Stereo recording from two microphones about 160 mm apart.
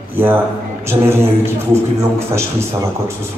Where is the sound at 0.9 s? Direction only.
15° right (ahead or behind).